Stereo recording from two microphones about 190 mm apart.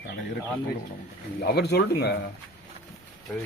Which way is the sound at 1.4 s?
60° left (ahead or behind).